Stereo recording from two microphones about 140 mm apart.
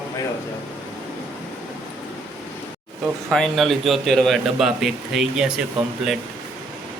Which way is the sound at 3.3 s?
Centre (ahead or behind).